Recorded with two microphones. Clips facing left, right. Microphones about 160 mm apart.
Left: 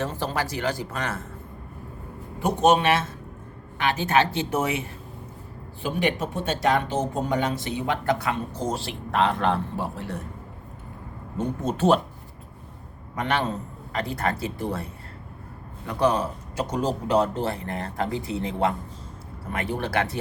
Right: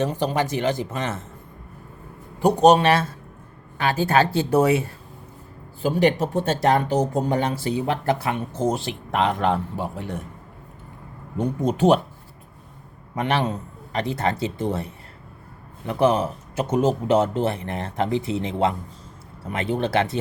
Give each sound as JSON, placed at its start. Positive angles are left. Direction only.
{"t": 0.0, "sound": "speech", "side_deg": -20}
{"t": 2.4, "sound": "speech", "side_deg": -35}
{"t": 11.3, "sound": "speech", "side_deg": -15}
{"t": 13.1, "sound": "speech", "side_deg": -25}
{"t": 15.9, "sound": "speech", "side_deg": -25}